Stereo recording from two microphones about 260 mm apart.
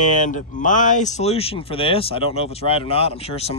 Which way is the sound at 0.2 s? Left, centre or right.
Left.